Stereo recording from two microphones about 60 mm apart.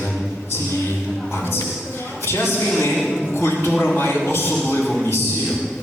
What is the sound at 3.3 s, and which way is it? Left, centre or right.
Speech, left.